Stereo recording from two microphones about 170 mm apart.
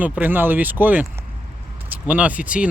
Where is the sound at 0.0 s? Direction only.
10° right (ahead or behind).